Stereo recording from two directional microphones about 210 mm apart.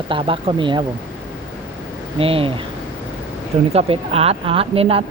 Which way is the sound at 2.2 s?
25° right (ahead or behind).